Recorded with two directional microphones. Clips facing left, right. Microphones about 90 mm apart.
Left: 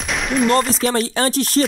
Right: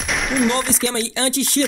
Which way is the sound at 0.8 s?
45° left (ahead or behind).